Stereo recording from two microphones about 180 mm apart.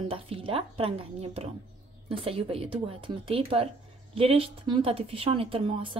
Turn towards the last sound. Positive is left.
turn(degrees=-30)  # may be behind; listen again after turning